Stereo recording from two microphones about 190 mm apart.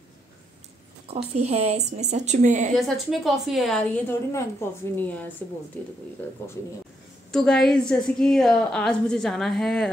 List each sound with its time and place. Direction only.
1.0 s speech: 35° right (ahead or behind)
2.8 s a woman's voice: centre (ahead or behind)
7.2 s a woman's voice: 5° left (ahead or behind)